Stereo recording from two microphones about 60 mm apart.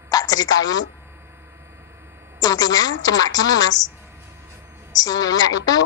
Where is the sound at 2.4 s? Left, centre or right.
Left.